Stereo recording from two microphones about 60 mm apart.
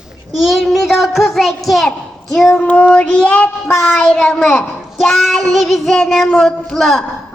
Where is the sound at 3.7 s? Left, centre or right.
Left.